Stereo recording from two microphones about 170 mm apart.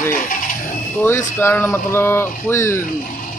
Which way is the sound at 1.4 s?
15° left (ahead or behind).